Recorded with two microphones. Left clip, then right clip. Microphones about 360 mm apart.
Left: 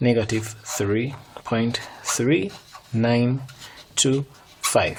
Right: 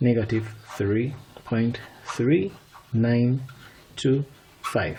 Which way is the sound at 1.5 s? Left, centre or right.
Left.